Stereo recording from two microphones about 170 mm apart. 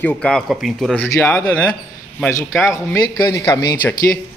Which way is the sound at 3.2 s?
20° left (ahead or behind).